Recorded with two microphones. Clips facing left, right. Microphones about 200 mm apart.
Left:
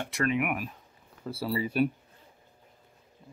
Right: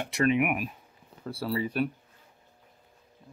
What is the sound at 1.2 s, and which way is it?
Speech, 5° left (ahead or behind).